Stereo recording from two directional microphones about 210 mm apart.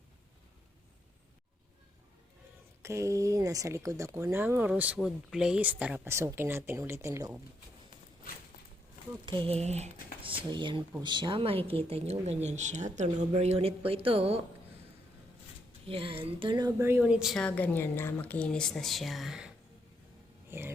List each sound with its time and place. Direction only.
2.8 s speech: 15° right (ahead or behind)
9.2 s a woman's voice: 25° right (ahead or behind)
15.9 s a woman's voice: 25° right (ahead or behind); by 19.5 s centre (ahead or behind)
20.5 s a sound: 10° right (ahead or behind)